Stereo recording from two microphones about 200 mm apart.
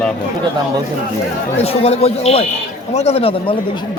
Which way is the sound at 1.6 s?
30° left (ahead or behind).